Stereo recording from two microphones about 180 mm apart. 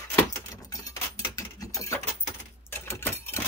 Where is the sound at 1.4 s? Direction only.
20° left (ahead or behind).